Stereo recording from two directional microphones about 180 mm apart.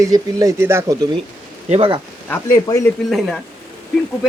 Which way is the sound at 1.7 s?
30° right (ahead or behind).